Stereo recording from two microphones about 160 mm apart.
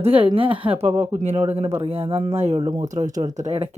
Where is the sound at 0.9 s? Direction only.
15° right (ahead or behind).